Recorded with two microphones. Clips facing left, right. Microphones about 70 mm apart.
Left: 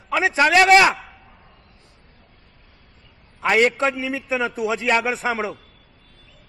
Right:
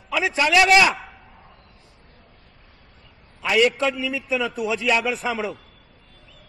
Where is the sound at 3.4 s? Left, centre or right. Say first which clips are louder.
Left 1 dB; left.